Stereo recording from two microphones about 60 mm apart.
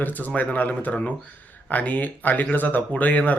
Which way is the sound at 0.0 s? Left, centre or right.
Left.